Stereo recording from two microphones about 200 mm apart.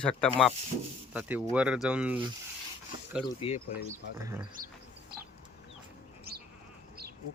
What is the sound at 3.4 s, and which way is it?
Speech, 35° left (ahead or behind).